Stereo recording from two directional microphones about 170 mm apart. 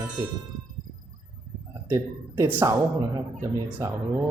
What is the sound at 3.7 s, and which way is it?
Speech, 15° right (ahead or behind).